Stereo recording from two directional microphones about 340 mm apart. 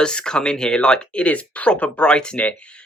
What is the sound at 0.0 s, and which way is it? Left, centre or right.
Speech, centre.